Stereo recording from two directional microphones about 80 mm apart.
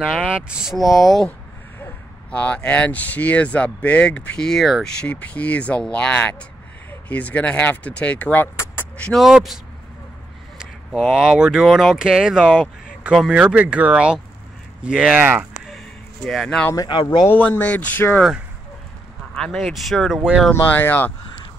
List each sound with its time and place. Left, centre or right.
0.0 s speech: centre
0.5 s speech: centre
2.3 s speech: centre
5.0 s speech: centre
9.1 s speech: centre
10.6 s speech: centre
15.5 s a sound: centre
16.3 s speech: centre
16.7 s speech: left
17.3 s speech: left
19.3 s speech: centre
20.6 s speech: left